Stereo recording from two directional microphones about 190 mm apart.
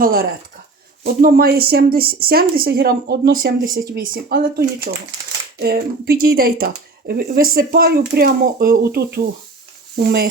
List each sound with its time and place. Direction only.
0.0 s speech: 50° right (ahead or behind)